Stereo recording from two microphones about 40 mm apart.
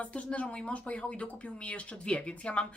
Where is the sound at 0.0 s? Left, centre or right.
Left.